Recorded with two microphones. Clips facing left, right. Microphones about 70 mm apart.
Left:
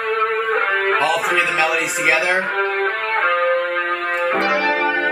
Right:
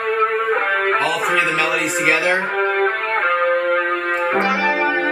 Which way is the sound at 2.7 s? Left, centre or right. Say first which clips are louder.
Right 2 dB; centre.